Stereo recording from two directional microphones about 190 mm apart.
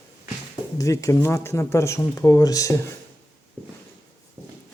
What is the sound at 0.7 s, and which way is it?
Speech, 15° left (ahead or behind).